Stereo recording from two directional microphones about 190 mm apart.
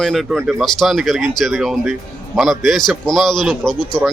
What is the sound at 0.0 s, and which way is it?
A man's voice, centre (ahead or behind).